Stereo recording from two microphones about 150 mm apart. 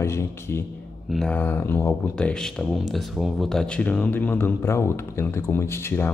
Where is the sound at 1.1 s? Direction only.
5° left (ahead or behind).